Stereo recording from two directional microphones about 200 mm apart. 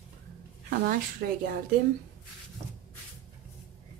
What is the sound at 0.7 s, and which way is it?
Speech, 45° right (ahead or behind).